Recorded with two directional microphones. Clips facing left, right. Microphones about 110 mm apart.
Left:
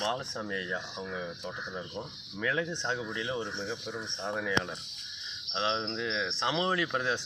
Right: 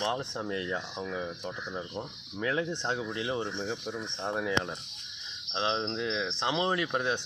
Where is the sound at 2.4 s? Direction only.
30° right (ahead or behind).